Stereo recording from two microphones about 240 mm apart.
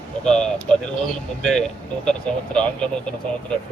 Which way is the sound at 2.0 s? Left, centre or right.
Centre.